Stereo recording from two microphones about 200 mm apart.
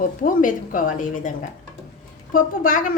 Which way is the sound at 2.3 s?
45° left (ahead or behind).